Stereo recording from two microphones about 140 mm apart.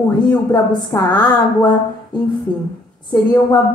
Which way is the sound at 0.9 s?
20° left (ahead or behind).